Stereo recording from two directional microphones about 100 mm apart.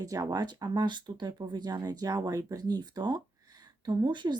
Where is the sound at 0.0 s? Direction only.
35° right (ahead or behind).